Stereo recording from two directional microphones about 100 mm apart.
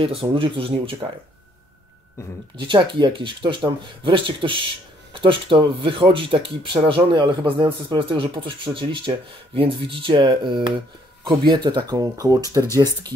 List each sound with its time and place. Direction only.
0.0 s speech: 70° right (ahead or behind)
2.5 s a man's voice: 55° right (ahead or behind)